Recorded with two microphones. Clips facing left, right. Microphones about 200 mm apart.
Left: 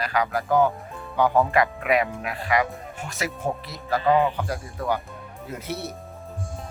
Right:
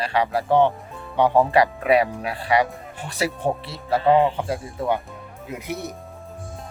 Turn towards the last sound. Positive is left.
turn(degrees=-15)  # may be behind; listen again after turning